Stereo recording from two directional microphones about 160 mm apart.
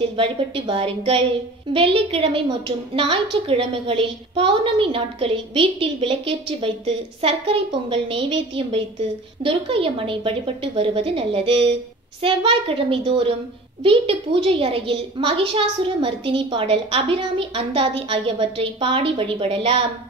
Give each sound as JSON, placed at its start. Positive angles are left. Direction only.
{"t": 0.2, "sound": "a woman's voice", "side_deg": -35}